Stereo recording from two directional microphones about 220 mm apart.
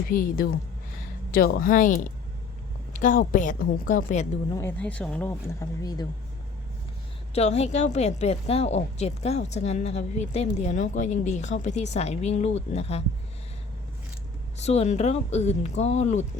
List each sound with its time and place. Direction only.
0.1 s a woman's voice: 40° left (ahead or behind)
4.5 s speech: 10° left (ahead or behind)
7.3 s a woman's voice: 30° left (ahead or behind)
14.6 s a woman's voice: 30° left (ahead or behind)